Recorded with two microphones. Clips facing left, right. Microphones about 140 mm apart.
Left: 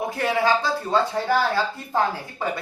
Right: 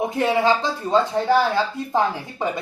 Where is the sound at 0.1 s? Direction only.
20° right (ahead or behind).